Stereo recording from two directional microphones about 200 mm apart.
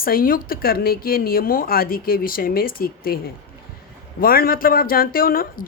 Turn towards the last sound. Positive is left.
turn(degrees=45)  # may be behind; listen again after turning